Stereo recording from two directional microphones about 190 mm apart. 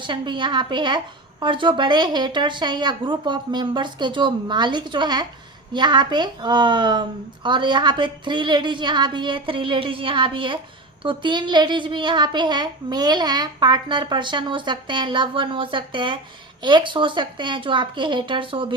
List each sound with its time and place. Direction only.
0.0 s a woman's voice: 25° right (ahead or behind)